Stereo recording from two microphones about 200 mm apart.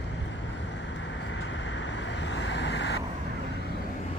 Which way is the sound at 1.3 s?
65° left (ahead or behind).